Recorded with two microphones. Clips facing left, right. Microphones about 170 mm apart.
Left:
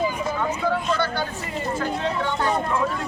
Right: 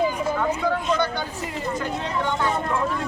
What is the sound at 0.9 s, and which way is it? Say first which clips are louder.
Speech: right 1 dB; 20° right (ahead or behind).